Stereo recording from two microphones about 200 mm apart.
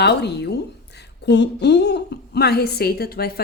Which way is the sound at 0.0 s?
55° left (ahead or behind).